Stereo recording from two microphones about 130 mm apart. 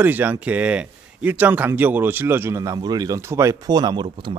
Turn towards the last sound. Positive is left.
turn(degrees=-40)  # may be behind; listen again after turning